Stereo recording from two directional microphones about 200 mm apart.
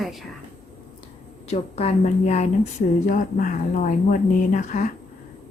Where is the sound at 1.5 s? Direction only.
30° left (ahead or behind).